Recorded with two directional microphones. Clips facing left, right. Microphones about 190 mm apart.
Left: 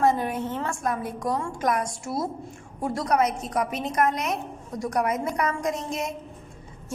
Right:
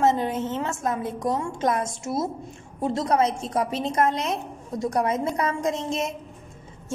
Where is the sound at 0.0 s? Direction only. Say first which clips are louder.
Right 1 dB; 20° right (ahead or behind).